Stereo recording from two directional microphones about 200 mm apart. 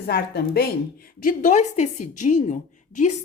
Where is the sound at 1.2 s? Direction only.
40° left (ahead or behind).